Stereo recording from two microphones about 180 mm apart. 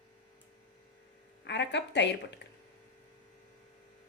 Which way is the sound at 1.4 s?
70° left (ahead or behind).